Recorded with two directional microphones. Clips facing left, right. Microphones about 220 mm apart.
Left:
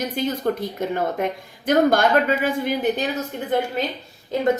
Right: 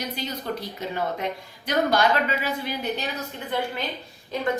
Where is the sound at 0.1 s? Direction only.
50° left (ahead or behind).